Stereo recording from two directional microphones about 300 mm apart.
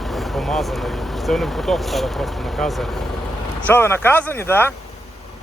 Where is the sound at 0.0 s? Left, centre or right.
Centre.